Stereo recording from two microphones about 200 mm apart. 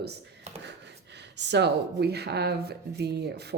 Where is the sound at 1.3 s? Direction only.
60° right (ahead or behind).